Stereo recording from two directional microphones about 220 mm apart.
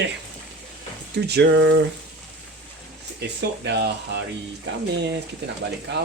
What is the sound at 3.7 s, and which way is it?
Speech, 50° right (ahead or behind).